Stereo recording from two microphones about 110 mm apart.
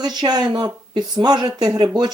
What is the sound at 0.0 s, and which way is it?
Speech, 40° right (ahead or behind).